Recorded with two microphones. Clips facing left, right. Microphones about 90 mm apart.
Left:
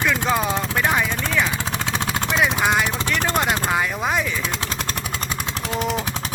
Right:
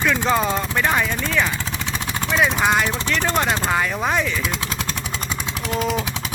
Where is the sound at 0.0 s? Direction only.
10° left (ahead or behind).